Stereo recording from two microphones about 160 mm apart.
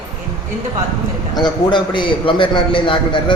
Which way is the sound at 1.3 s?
25° left (ahead or behind).